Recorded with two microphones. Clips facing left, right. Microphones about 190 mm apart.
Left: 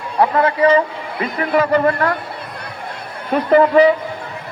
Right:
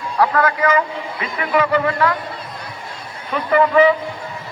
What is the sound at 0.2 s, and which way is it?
Speech, 25° left (ahead or behind).